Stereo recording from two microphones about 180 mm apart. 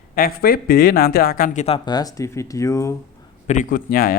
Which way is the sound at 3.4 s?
45° left (ahead or behind).